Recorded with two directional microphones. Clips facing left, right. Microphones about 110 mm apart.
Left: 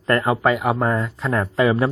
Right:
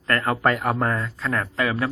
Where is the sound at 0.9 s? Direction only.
20° left (ahead or behind).